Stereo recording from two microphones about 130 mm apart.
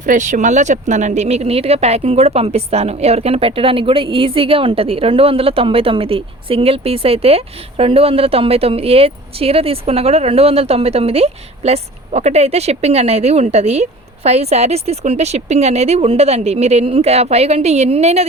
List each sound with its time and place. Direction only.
0.0 s speech: 75° right (ahead or behind); by 18.3 s 55° right (ahead or behind)